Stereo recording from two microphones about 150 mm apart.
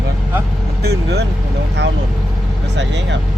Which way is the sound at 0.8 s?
90° right.